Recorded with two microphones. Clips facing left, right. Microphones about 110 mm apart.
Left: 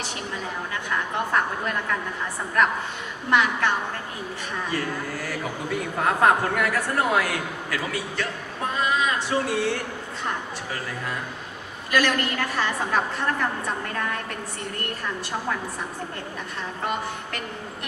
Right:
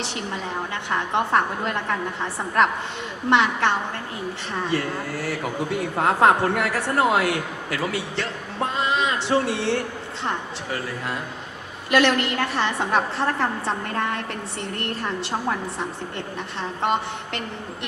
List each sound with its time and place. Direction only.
0.7 s a man's voice: 25° right (ahead or behind)
3.2 s a man's voice: 25° right (ahead or behind)
4.7 s a man's voice: 30° right (ahead or behind)
8.7 s a sound: 25° right (ahead or behind)
9.3 s a man's voice: 30° right (ahead or behind)
11.9 s a man's voice: 25° right (ahead or behind)
16.6 s a man's voice: 25° right (ahead or behind)